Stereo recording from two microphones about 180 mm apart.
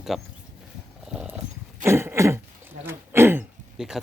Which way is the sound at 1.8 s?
15° right (ahead or behind).